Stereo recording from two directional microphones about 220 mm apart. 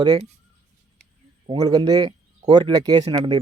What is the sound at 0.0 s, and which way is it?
Speech, 20° right (ahead or behind).